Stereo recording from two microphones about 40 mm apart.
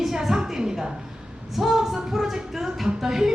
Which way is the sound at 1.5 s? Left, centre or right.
Centre.